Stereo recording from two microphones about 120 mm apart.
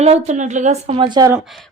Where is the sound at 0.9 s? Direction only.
40° right (ahead or behind).